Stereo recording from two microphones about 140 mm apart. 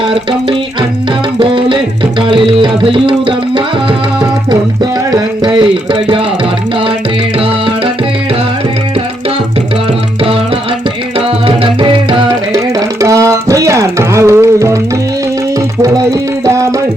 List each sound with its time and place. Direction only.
0.1 s music: 35° right (ahead or behind)
5.5 s a sound: 40° right (ahead or behind)
7.3 s music: 40° right (ahead or behind)
11.3 s music: 40° right (ahead or behind)
13.0 s music: 25° right (ahead or behind)